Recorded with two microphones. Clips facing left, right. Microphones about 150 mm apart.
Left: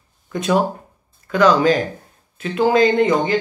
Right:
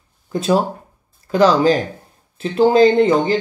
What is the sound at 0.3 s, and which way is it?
Speech, 30° right (ahead or behind).